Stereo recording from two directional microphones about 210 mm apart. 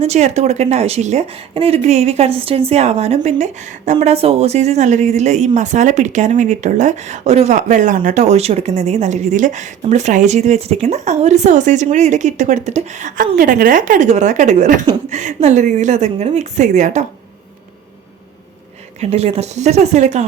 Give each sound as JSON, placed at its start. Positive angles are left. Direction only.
{"t": 0.0, "sound": "speech", "side_deg": -30}
{"t": 18.9, "sound": "speech", "side_deg": -30}